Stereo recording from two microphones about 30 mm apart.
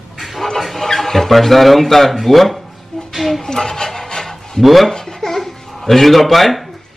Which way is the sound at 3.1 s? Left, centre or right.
Centre.